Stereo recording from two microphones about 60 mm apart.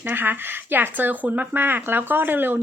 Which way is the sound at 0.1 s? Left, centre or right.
Right.